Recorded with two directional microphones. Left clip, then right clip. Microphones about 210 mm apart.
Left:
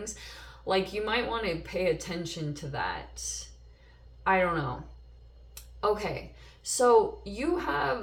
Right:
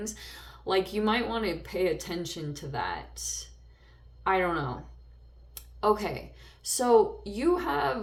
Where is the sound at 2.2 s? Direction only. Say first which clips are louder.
Even; 45° right (ahead or behind).